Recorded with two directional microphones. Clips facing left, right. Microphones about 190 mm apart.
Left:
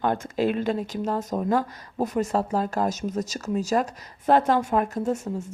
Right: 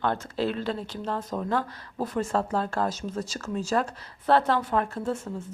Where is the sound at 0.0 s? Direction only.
15° left (ahead or behind).